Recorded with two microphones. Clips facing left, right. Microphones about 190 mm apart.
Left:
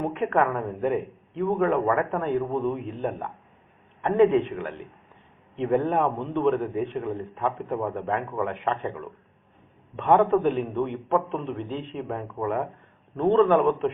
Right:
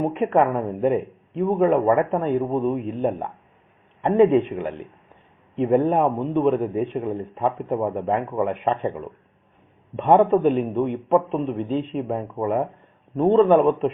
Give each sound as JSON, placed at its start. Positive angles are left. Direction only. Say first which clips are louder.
{"t": 0.0, "sound": "a man's voice", "louder": "right 4 dB", "side_deg": -20}